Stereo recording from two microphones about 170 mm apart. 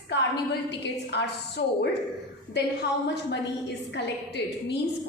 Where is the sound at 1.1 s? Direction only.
90° left.